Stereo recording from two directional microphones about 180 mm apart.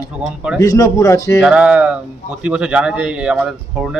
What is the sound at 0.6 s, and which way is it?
Speech, 20° left (ahead or behind).